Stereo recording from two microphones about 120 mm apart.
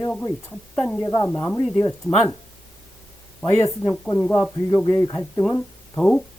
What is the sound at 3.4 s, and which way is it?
Speech, 15° left (ahead or behind).